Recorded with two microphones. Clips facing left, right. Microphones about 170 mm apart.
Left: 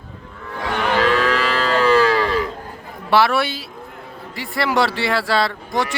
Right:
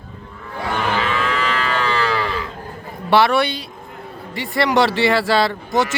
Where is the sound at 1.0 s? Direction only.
40° left (ahead or behind).